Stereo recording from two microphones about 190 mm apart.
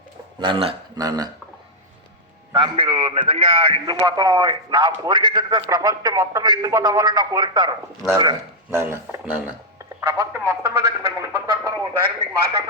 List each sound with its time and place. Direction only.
0.3 s a man's voice: 25° right (ahead or behind)
2.5 s a man's voice: 25° right (ahead or behind)
8.7 s speech: 10° right (ahead or behind)
10.0 s a sound: 15° right (ahead or behind)